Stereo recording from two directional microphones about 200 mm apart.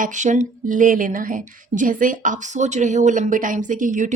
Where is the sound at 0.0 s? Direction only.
40° right (ahead or behind).